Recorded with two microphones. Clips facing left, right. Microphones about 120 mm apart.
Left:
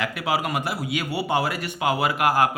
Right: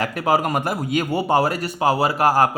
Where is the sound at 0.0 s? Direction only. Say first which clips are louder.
Right 5 dB; 40° right (ahead or behind).